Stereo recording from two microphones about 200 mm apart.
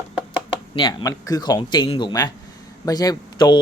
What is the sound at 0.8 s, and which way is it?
Speech, 20° left (ahead or behind).